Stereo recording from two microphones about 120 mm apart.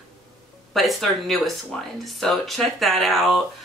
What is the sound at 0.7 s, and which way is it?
Speech, centre (ahead or behind).